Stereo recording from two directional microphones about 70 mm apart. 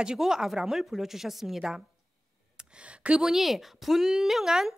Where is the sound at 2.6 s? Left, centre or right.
Centre.